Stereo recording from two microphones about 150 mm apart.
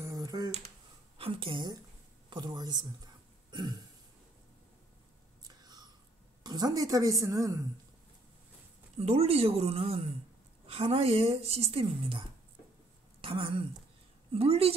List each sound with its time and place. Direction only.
0.0 s a sound: 25° right (ahead or behind)
1.1 s a woman's voice: 35° right (ahead or behind)
5.5 s whispering: 25° right (ahead or behind)
6.4 s a woman's voice: 25° right (ahead or behind)
8.9 s a woman's voice: 45° right (ahead or behind)